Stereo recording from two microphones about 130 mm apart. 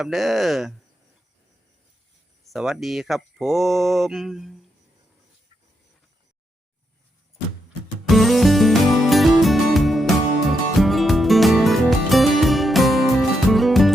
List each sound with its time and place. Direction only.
0.0 s speech: centre (ahead or behind)
2.5 s speech: centre (ahead or behind)
8.0 s music: centre (ahead or behind)